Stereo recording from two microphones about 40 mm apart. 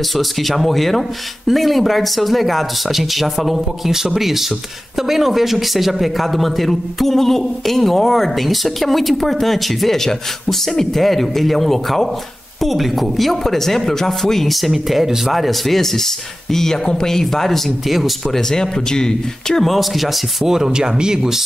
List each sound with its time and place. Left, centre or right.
0.1 s a man's voice: centre
17.8 s a man's voice: centre
18.3 s speech: centre
19.6 s a man's voice: centre
20.4 s speech: centre